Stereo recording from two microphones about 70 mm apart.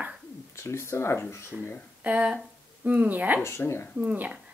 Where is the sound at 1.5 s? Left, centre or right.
Centre.